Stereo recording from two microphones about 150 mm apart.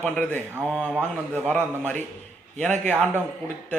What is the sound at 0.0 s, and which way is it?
A man's voice, 10° left (ahead or behind).